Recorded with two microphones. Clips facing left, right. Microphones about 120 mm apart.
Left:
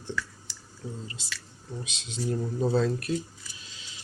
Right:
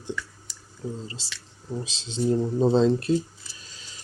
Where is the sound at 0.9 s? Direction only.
30° right (ahead or behind).